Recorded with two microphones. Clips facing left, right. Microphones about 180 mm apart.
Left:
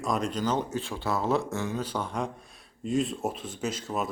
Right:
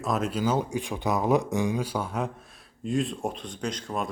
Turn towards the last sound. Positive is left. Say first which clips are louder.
# even
turn(degrees=5)  # may be behind; listen again after turning